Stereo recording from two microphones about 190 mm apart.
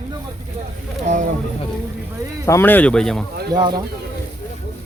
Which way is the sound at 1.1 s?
40° right (ahead or behind).